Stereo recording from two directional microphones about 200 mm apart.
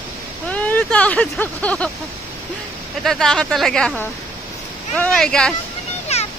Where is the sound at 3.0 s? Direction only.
Centre (ahead or behind).